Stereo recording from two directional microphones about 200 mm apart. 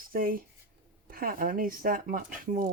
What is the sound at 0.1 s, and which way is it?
Speech, 45° right (ahead or behind).